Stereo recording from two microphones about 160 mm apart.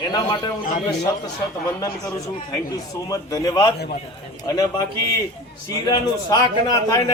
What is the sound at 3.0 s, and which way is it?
A man's voice, 20° left (ahead or behind).